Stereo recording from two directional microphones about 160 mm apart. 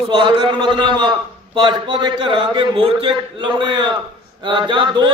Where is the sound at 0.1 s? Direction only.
30° right (ahead or behind).